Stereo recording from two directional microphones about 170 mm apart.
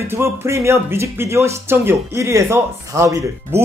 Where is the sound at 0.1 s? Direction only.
15° right (ahead or behind).